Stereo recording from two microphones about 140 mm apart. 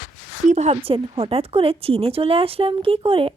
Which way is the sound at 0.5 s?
50° right (ahead or behind).